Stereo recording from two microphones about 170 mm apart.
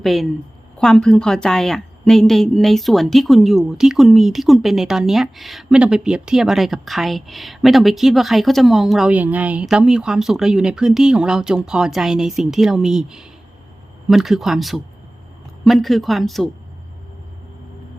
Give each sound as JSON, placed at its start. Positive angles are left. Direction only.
{"t": 0.0, "sound": "a woman's voice", "side_deg": 0}